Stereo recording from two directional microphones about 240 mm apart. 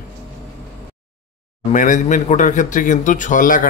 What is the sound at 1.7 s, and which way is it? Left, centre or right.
Speech, left.